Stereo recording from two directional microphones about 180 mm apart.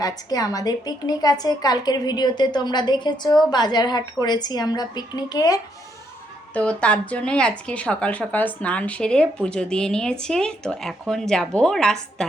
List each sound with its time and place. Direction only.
0.0 s a woman's voice: 20° left (ahead or behind)
6.5 s a woman's voice: 5° left (ahead or behind)